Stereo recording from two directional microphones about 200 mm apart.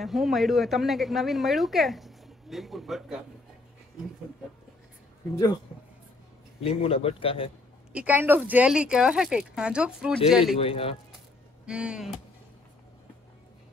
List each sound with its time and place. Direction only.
0.0 s a woman's voice: centre (ahead or behind)
5.3 s a man's voice: 20° left (ahead or behind)
6.6 s a man's voice: 30° left (ahead or behind)
7.9 s a woman's voice: 5° right (ahead or behind)
10.6 s a man's voice: 30° left (ahead or behind)
11.6 s a woman's voice: 5° right (ahead or behind)